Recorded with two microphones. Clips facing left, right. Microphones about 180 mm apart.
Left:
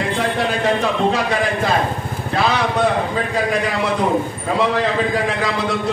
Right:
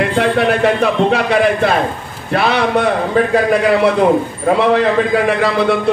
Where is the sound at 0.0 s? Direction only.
65° right (ahead or behind).